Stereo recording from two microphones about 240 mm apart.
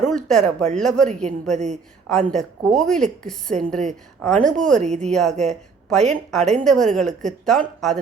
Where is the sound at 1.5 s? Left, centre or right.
Right.